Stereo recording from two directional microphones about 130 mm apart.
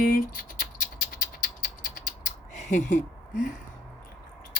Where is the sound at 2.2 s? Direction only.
65° left (ahead or behind).